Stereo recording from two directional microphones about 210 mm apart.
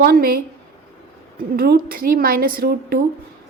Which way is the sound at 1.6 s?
45° right (ahead or behind).